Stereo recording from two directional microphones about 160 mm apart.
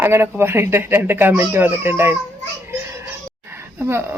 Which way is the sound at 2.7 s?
15° right (ahead or behind).